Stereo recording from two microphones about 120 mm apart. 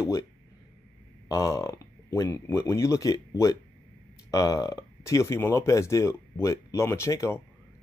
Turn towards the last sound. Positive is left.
turn(degrees=25)  # may be behind; listen again after turning